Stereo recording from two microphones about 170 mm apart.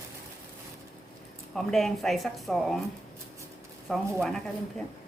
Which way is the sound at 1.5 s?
Centre (ahead or behind).